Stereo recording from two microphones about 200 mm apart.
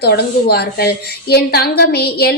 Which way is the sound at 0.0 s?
55° left (ahead or behind).